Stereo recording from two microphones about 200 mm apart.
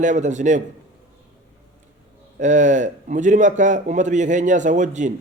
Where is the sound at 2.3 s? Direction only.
40° right (ahead or behind).